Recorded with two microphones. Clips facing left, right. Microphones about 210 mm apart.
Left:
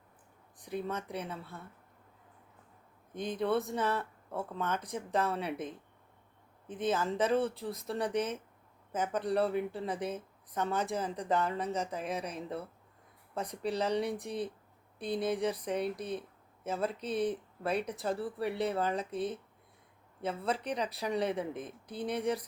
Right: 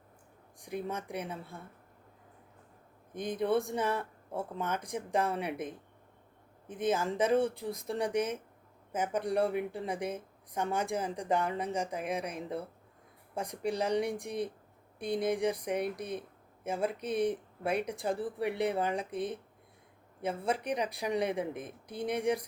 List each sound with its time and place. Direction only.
0.6 s speech: 10° right (ahead or behind)
3.1 s speech: 15° right (ahead or behind)